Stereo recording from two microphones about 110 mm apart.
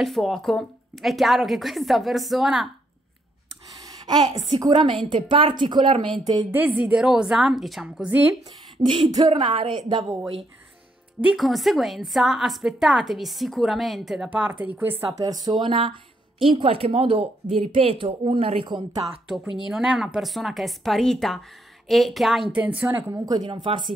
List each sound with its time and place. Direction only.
0.0 s a woman's voice: centre (ahead or behind)
3.9 s a sound: 40° right (ahead or behind)
4.4 s a woman's voice: 35° right (ahead or behind)
4.7 s speech: 50° right (ahead or behind)
6.5 s a woman's voice: 10° right (ahead or behind)
8.7 s speech: 50° right (ahead or behind)
11.1 s a woman's voice: 10° right (ahead or behind)
11.4 s a woman's voice: centre (ahead or behind); by 15.0 s 15° right (ahead or behind)
15.1 s a woman's voice: 35° right (ahead or behind)
15.6 s speech: 50° right (ahead or behind)
18.7 s speech: 45° right (ahead or behind)
19.2 s a woman's voice: 5° right (ahead or behind)
22.8 s a woman's voice: 25° right (ahead or behind)
23.2 s speech: 40° right (ahead or behind)